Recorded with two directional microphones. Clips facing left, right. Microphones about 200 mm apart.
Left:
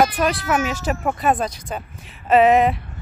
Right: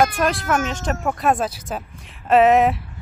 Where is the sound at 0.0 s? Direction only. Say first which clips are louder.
Even; centre (ahead or behind).